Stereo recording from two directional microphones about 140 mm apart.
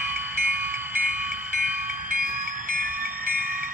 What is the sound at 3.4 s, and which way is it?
Train, 15° right (ahead or behind).